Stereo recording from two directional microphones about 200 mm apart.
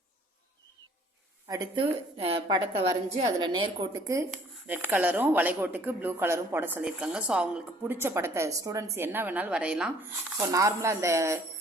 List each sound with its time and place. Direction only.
1.5 s a woman's voice: 20° right (ahead or behind)